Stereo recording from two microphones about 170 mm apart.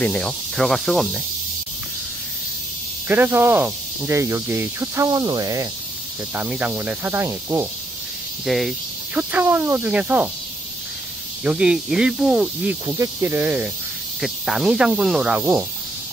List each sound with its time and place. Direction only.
0.0 s speech: 5° left (ahead or behind)
3.1 s speech: 10° right (ahead or behind)
6.3 s speech: 10° right (ahead or behind)
8.5 s speech: centre (ahead or behind)
11.4 s speech: 5° right (ahead or behind)
12.8 s speech: 20° right (ahead or behind)